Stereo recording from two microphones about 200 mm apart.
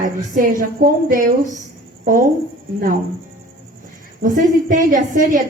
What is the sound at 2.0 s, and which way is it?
Speech, 40° right (ahead or behind).